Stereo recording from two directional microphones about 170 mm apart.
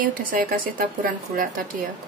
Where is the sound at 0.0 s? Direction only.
55° right (ahead or behind).